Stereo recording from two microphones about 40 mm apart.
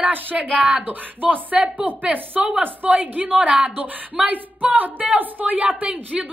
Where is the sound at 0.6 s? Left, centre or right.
Right.